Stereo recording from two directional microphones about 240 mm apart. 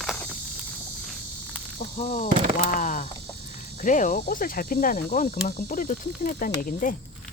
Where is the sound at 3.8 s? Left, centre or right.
Left.